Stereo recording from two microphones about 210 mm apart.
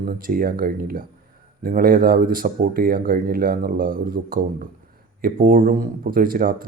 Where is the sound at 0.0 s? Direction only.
45° right (ahead or behind).